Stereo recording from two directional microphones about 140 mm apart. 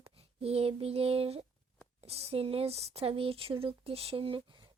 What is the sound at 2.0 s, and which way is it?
Speech, 45° right (ahead or behind).